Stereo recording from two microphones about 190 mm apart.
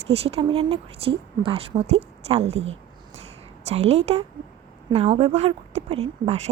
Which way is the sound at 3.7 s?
35° right (ahead or behind).